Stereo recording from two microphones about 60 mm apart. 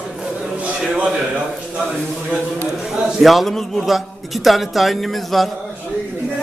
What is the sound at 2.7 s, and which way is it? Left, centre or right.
A man's voice, centre.